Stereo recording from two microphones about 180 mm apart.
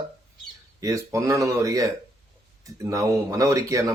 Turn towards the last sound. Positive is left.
turn(degrees=-20)  # may be behind; listen again after turning